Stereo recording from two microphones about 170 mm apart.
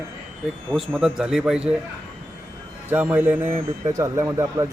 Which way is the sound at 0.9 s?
5° right (ahead or behind).